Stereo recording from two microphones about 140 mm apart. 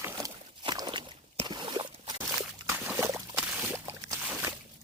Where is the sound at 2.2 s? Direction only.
20° right (ahead or behind).